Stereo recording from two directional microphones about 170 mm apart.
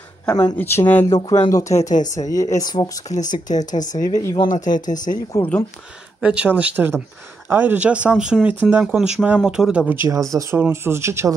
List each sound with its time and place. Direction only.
0.3 s speech: 20° left (ahead or behind)
1.8 s speech: 45° left (ahead or behind)
2.1 s speech: 20° left (ahead or behind)
3.1 s speech: 45° left (ahead or behind)
4.0 s speech: 20° left (ahead or behind)
6.2 s speech: 5° right (ahead or behind)
10.0 s speech: 20° right (ahead or behind)